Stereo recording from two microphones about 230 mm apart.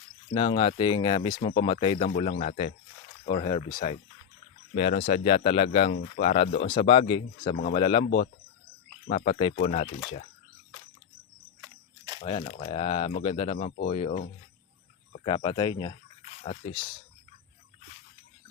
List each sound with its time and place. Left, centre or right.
0.3 s speech: left
4.7 s speech: left
6.7 s speech: left
8.0 s speech: left
9.0 s speech: left
9.6 s speech: left
12.2 s speech: left